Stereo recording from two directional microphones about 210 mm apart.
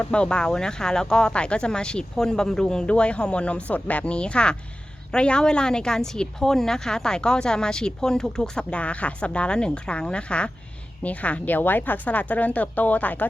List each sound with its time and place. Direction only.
0.0 s a woman's voice: 5° left (ahead or behind)